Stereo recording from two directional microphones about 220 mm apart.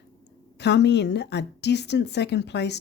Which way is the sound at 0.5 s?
50° left (ahead or behind).